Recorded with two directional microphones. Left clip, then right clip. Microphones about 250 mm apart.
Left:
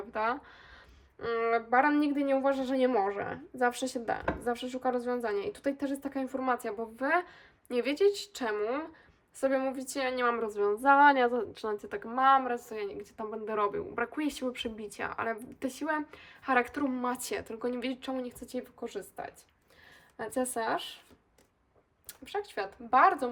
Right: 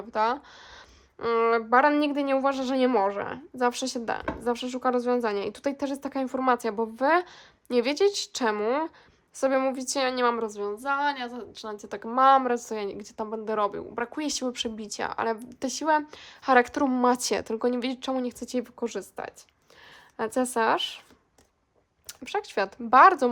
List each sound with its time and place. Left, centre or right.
0.1 s a woman's voice: centre
22.0 s speech: centre